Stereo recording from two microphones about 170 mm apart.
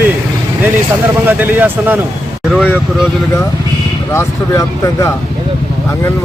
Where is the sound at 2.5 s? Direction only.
5° left (ahead or behind).